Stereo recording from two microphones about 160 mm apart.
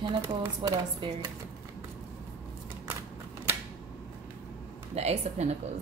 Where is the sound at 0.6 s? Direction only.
30° right (ahead or behind).